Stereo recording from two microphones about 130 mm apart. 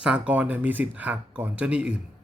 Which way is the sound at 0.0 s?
10° right (ahead or behind).